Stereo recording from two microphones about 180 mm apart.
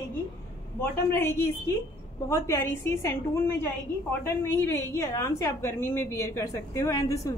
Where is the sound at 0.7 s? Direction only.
15° left (ahead or behind).